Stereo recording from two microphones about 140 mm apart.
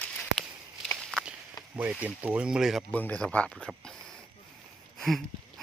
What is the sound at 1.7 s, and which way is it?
Speech, 10° right (ahead or behind).